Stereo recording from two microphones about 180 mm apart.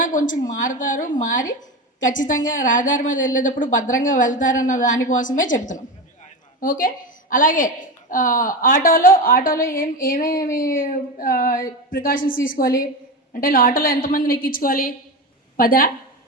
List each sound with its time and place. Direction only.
0.0 s a woman's voice: 45° left (ahead or behind)
6.6 s a woman's voice: 50° left (ahead or behind)